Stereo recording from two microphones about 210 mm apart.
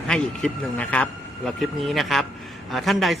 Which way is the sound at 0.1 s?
5° left (ahead or behind).